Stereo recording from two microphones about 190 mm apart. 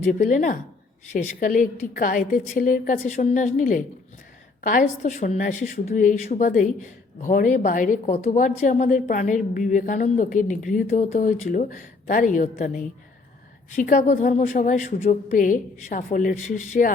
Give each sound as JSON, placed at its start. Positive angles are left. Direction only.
{"t": 0.0, "sound": "a woman's voice", "side_deg": 40}